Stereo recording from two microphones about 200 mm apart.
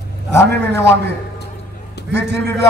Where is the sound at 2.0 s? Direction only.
60° right (ahead or behind).